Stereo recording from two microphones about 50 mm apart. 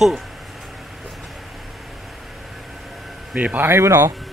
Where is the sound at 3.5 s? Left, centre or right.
Right.